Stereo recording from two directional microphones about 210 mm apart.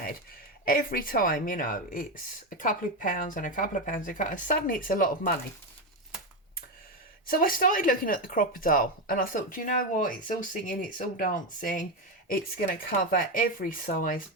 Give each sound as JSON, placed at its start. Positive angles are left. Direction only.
{"t": 0.6, "sound": "speech", "side_deg": 40}
{"t": 7.3, "sound": "speech", "side_deg": 40}